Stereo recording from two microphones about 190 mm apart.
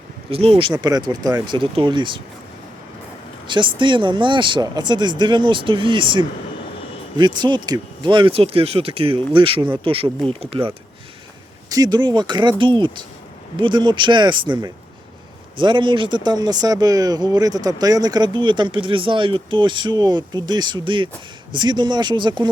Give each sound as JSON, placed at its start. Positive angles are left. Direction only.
{"t": 0.3, "sound": "speech", "side_deg": -30}
{"t": 3.4, "sound": "speech", "side_deg": -25}